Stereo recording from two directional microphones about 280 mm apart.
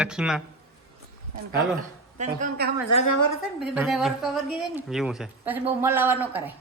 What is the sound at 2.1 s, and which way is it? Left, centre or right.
Speech, right.